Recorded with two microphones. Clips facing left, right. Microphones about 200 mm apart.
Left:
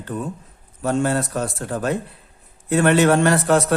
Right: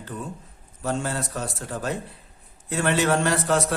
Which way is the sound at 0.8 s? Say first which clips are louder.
Left 7 dB; 55° left (ahead or behind).